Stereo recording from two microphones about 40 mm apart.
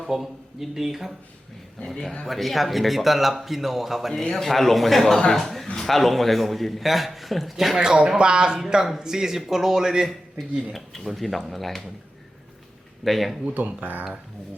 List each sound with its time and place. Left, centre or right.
0.0 s a man's voice: centre
2.2 s a man's voice: centre
4.3 s a man's voice: centre
7.8 s a man's voice: centre
10.3 s a man's voice: centre
13.1 s a man's voice: centre
13.4 s speech: right